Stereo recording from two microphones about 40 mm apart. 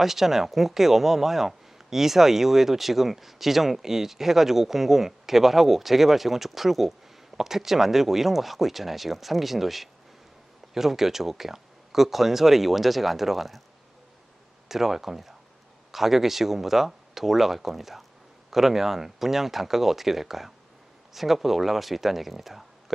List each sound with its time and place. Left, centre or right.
0.0 s speech: centre
14.7 s speech: centre